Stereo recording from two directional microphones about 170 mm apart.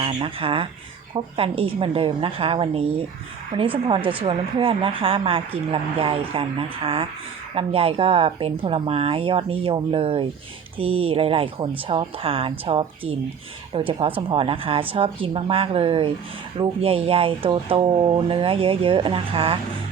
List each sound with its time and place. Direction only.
0.0 s speech: 30° right (ahead or behind)